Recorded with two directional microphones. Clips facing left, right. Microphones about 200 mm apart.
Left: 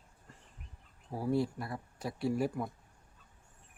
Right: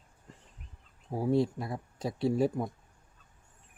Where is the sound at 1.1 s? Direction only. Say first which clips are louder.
Right 4 dB; 25° right (ahead or behind).